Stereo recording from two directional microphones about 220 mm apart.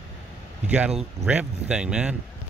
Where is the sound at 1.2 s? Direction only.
5° right (ahead or behind).